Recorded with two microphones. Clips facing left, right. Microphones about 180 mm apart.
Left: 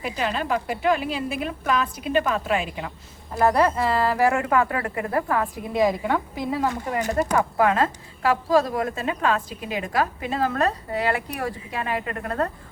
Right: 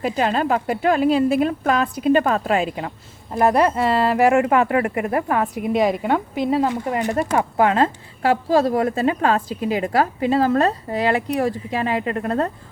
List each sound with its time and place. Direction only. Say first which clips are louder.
0.0 s a woman's voice: right 6 dB; 40° right (ahead or behind)
3.4 s a woman's voice: right 3 dB; 20° right (ahead or behind)